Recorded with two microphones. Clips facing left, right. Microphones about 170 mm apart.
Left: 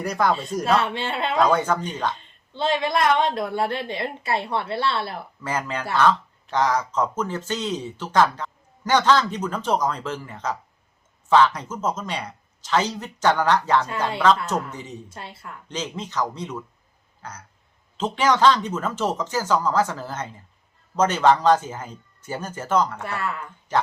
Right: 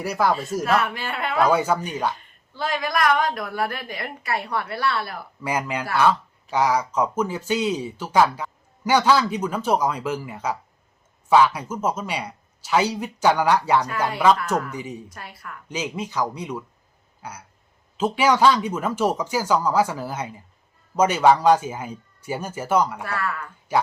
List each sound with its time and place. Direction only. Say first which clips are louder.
0.0 s speech: even; 5° right (ahead or behind)
0.6 s a woman's voice: left 3 dB; 25° left (ahead or behind)
1.4 s speech: right 1 dB; 10° right (ahead or behind)
2.1 s a woman's voice: left 3 dB; 25° left (ahead or behind)
5.4 s speech: right 2 dB; 10° right (ahead or behind)
15.1 s a woman's voice: left 1 dB; 25° left (ahead or behind)
15.7 s speech: right 2 dB; 10° right (ahead or behind)
23.0 s a woman's voice: right 1 dB; 25° left (ahead or behind)
23.7 s speech: right 1 dB; 10° right (ahead or behind)